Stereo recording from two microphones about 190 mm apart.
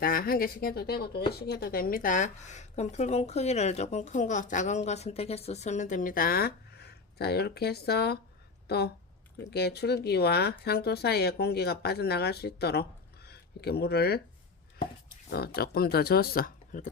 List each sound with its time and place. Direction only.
0.0 s speech: 50° left (ahead or behind)
15.3 s speech: 55° left (ahead or behind)